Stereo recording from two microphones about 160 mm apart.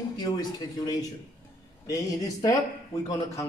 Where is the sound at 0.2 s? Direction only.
25° left (ahead or behind).